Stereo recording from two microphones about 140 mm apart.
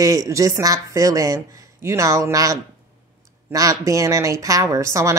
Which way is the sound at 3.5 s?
25° right (ahead or behind).